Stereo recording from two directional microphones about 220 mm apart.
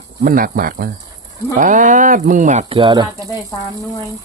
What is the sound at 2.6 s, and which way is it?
Speech, 20° right (ahead or behind).